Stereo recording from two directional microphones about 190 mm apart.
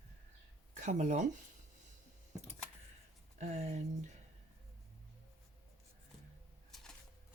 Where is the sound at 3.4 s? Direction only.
35° right (ahead or behind).